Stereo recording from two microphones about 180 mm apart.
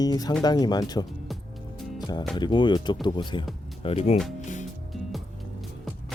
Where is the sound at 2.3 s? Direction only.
25° left (ahead or behind).